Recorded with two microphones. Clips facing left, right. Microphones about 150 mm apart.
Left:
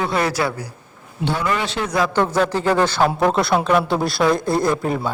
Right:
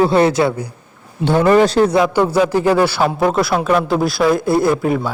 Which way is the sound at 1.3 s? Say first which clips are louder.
Right 11 dB; 45° right (ahead or behind).